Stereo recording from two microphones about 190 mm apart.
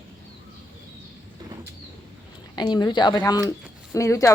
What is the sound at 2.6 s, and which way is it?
Speech, 20° left (ahead or behind).